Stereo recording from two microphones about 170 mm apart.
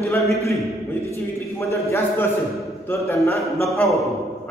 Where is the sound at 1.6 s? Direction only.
15° left (ahead or behind).